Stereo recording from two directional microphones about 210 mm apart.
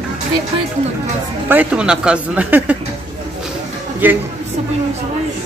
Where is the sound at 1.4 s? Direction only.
5° right (ahead or behind).